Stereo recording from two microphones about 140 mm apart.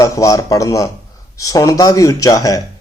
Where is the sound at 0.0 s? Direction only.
25° left (ahead or behind).